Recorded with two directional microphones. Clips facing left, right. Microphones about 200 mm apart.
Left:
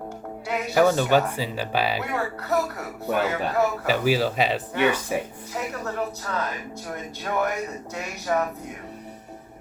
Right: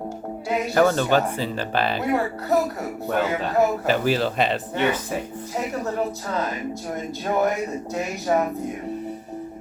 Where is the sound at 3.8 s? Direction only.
10° left (ahead or behind).